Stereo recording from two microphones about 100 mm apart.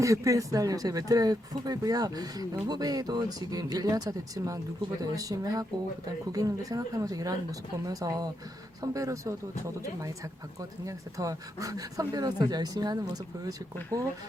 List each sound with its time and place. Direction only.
0.0 s speech: 35° right (ahead or behind)